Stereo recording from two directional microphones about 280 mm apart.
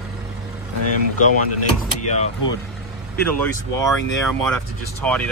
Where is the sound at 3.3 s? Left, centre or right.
Centre.